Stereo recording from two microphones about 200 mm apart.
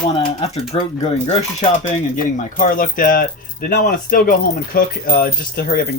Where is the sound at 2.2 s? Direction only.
40° left (ahead or behind).